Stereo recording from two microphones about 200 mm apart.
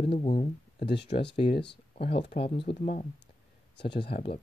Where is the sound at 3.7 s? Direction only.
60° left (ahead or behind).